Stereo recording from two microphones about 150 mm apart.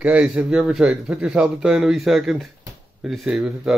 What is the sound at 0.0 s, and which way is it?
Speech, 5° right (ahead or behind).